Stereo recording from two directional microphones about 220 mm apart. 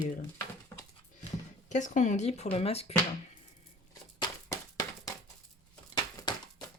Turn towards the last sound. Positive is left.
turn(degrees=20)  # may be behind; listen again after turning